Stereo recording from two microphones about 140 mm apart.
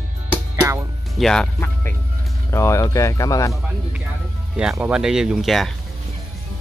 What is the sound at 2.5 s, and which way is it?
Speech, 20° left (ahead or behind).